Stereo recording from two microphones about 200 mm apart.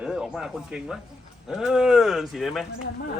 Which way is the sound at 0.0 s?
5° right (ahead or behind).